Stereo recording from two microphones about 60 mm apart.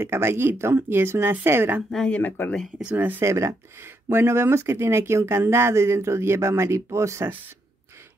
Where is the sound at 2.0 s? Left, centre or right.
Left.